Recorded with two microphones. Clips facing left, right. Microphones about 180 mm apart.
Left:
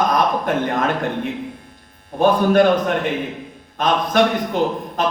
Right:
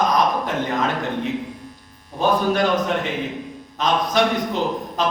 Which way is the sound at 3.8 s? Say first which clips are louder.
Left 2 dB; 55° left (ahead or behind).